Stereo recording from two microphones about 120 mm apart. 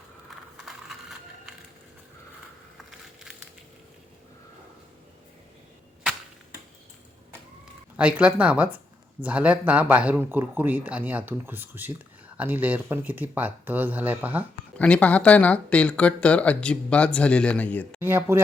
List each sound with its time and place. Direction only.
0.5 s ratchet: centre (ahead or behind)
7.9 s speech: 10° right (ahead or behind)
14.8 s speech: 10° left (ahead or behind)
18.0 s speech: 15° right (ahead or behind)